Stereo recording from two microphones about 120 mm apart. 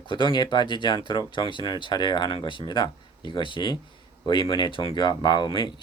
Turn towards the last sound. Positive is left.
turn(degrees=40)  # may be behind; listen again after turning